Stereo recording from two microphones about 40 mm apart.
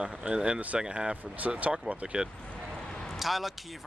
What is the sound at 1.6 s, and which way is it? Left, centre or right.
Speech, right.